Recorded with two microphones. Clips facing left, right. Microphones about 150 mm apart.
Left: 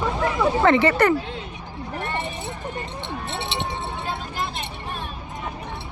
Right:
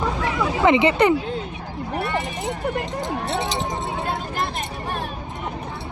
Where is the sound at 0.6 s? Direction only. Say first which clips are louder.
Right 2 dB; 15° right (ahead or behind).